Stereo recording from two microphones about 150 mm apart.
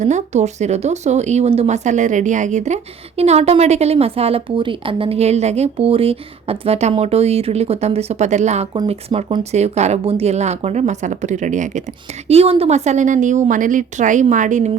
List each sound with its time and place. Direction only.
0.0 s speech: 50° right (ahead or behind)
12.3 s a woman's voice: 40° right (ahead or behind); by 14.7 s 55° right (ahead or behind)